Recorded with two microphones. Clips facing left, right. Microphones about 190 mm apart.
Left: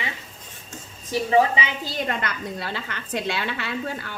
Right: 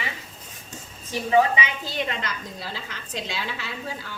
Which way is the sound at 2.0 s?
55° left (ahead or behind).